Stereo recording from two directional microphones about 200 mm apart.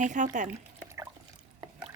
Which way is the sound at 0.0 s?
40° right (ahead or behind).